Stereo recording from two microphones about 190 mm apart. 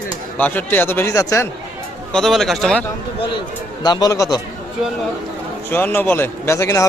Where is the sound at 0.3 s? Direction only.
10° left (ahead or behind).